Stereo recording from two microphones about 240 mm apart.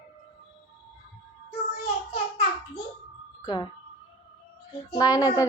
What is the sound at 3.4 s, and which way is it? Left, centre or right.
Speech, centre.